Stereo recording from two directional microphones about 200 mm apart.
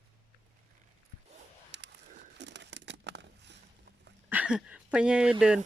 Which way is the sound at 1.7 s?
65° right (ahead or behind).